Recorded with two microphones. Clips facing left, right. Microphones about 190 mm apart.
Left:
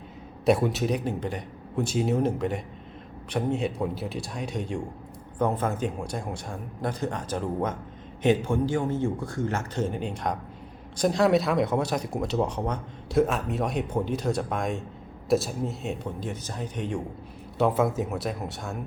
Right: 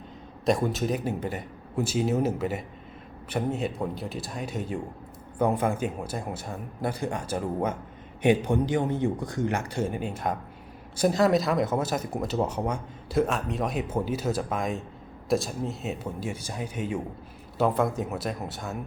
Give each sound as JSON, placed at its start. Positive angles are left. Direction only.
{"t": 0.4, "sound": "a man's voice", "side_deg": 5}